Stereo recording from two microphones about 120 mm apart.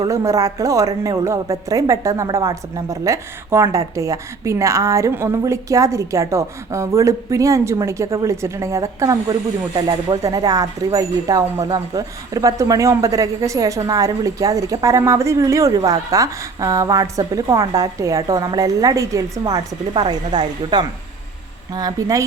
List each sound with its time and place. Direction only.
0.0 s speech: 25° right (ahead or behind)
10.2 s speech: 30° right (ahead or behind)